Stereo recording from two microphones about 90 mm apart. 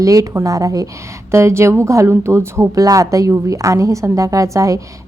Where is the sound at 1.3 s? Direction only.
30° right (ahead or behind).